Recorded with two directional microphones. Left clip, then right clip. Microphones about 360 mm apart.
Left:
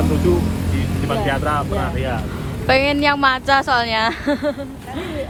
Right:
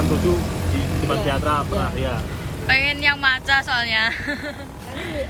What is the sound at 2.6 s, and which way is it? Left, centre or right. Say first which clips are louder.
A woman's voice: left 3 dB; centre.